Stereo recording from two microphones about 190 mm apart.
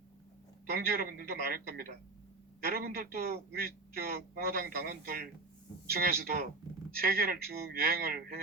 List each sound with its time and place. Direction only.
0.7 s a man's voice: 50° right (ahead or behind)